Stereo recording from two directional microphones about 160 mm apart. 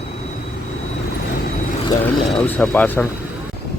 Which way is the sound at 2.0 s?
10° left (ahead or behind).